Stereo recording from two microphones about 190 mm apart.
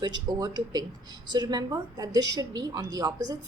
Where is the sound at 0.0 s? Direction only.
20° right (ahead or behind).